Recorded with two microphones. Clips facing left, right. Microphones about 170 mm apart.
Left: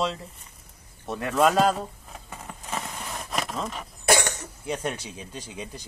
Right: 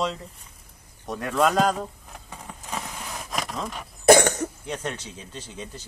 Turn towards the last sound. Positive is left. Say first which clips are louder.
# left 1 dB
turn(degrees=10)  # may be behind; listen again after turning